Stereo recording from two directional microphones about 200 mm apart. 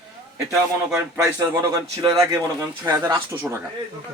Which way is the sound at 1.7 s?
20° right (ahead or behind).